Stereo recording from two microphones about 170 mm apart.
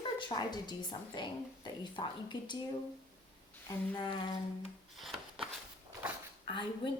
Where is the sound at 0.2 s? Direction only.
25° left (ahead or behind).